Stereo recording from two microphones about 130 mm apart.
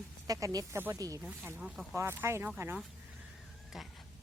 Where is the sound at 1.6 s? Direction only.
5° right (ahead or behind).